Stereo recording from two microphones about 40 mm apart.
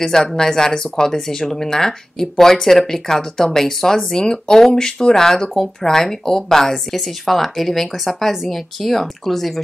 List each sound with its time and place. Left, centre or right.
0.0 s speech: centre